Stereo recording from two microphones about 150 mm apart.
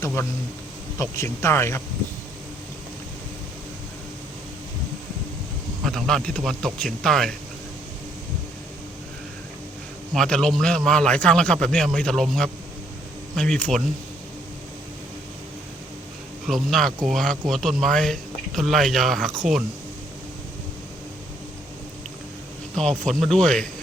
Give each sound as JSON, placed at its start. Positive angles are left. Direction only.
{"t": 0.2, "sound": "speech", "side_deg": 20}
{"t": 5.8, "sound": "a man's voice", "side_deg": 0}
{"t": 10.2, "sound": "a man's voice", "side_deg": 5}
{"t": 16.5, "sound": "a man's voice", "side_deg": 0}
{"t": 22.7, "sound": "a man's voice", "side_deg": 5}